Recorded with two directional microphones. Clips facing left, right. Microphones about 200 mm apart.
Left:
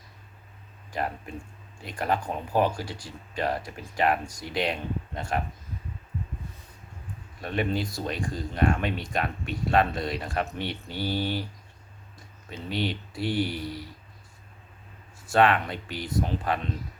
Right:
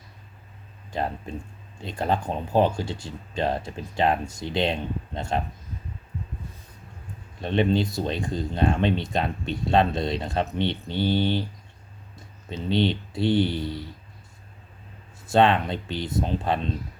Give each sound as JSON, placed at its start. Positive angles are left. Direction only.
{"t": 0.9, "sound": "speech", "side_deg": -25}
{"t": 7.4, "sound": "speech", "side_deg": -25}
{"t": 15.3, "sound": "speech", "side_deg": -25}